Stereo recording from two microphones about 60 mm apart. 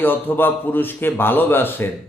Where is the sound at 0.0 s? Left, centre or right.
Left.